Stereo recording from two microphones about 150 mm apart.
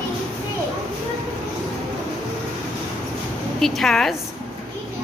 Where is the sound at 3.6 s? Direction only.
Centre (ahead or behind).